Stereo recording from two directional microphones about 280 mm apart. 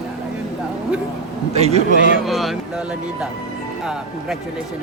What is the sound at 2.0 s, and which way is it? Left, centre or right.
Speech, right.